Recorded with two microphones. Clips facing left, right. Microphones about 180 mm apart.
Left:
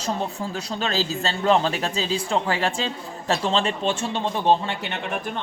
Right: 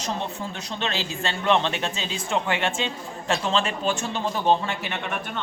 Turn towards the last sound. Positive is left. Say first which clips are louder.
# left 2 dB
turn(degrees=25)  # may be behind; listen again after turning